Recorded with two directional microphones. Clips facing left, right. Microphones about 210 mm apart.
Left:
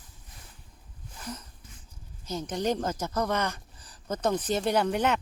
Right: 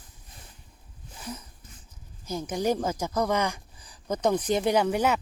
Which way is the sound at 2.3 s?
10° right (ahead or behind).